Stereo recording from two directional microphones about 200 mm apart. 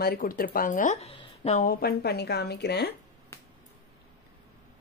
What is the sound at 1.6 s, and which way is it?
Speech, 50° left (ahead or behind).